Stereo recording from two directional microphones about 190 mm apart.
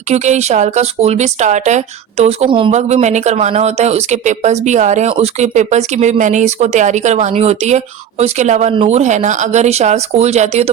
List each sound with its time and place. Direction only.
0.1 s speech: 35° right (ahead or behind)